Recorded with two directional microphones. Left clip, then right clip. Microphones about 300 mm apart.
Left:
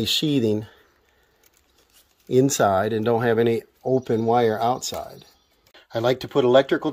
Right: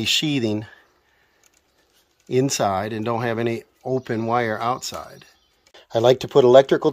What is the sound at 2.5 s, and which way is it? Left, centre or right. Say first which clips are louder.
Speech: left 2 dB; centre.